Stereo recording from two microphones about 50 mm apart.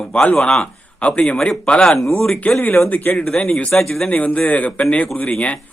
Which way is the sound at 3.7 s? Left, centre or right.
Centre.